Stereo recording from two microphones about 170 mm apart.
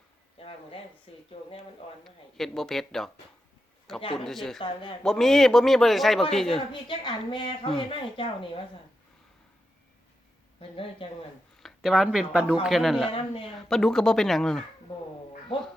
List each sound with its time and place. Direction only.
0.3 s a sound: 35° left (ahead or behind)
1.1 s speech: 35° left (ahead or behind)
2.0 s a man's voice: centre (ahead or behind)
4.2 s a man's voice: centre (ahead or behind)
4.6 s a woman's voice: 30° left (ahead or behind)
5.0 s a man's voice: centre (ahead or behind)
6.8 s a woman's voice: 25° left (ahead or behind)
11.6 s a man's voice: centre (ahead or behind)